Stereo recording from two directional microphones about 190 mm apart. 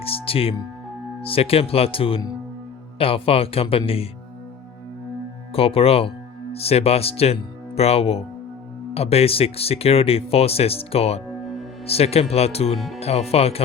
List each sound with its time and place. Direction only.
0.0 s speech: 30° left (ahead or behind)
5.5 s speech: 30° left (ahead or behind)
12.7 s speech: centre (ahead or behind)
13.0 s speech: 35° left (ahead or behind)